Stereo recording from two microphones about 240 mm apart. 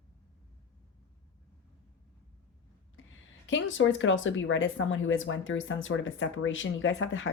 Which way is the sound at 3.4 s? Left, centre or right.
Left.